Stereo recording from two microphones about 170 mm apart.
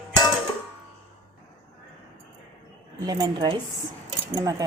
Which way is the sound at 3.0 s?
20° right (ahead or behind).